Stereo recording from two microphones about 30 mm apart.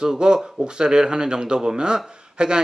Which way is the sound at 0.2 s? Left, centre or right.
Right.